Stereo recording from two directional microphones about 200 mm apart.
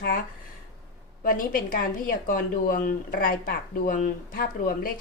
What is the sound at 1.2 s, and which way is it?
Speech, 45° left (ahead or behind).